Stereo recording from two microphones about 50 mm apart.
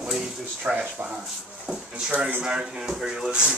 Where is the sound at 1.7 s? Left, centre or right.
Centre.